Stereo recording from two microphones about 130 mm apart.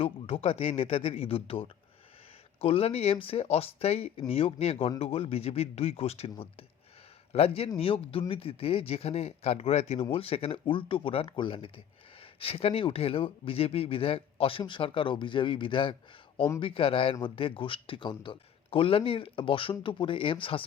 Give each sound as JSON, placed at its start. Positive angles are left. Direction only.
{"t": 0.0, "sound": "speech", "side_deg": 50}
{"t": 7.3, "sound": "speech", "side_deg": 50}